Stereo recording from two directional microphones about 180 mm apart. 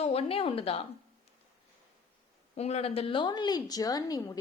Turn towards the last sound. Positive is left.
turn(degrees=20)  # may be behind; listen again after turning